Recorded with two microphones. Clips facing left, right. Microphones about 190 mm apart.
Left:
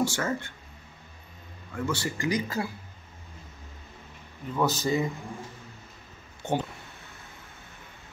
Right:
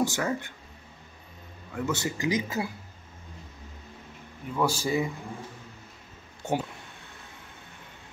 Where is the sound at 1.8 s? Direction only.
20° right (ahead or behind).